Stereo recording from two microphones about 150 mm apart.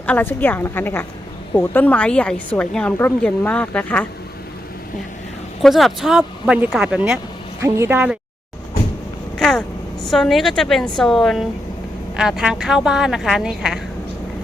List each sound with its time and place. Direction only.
0.0 s a woman's voice: 10° left (ahead or behind)
5.6 s a woman's voice: centre (ahead or behind)
9.4 s a woman's voice: centre (ahead or behind)